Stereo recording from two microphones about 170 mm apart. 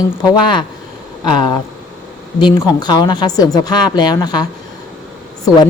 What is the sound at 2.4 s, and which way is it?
A woman's voice, 25° left (ahead or behind).